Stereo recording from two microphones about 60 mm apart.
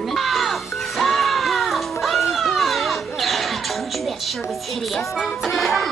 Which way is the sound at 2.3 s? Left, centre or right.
Centre.